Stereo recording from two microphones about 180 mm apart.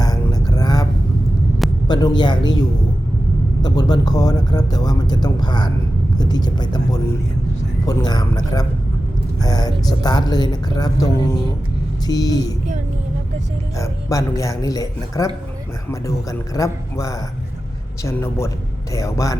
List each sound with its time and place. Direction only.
0.0 s a sound: 20° left (ahead or behind)
1.9 s speech: 25° left (ahead or behind)
6.1 s vehicle: 25° left (ahead or behind)
7.9 s speech: 20° left (ahead or behind)
13.7 s speech: 15° left (ahead or behind)
16.6 s speech: 20° left (ahead or behind)